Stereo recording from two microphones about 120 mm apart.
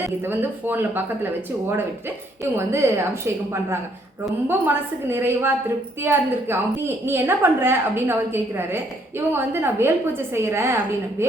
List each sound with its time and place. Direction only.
0.3 s a woman's voice: 20° right (ahead or behind)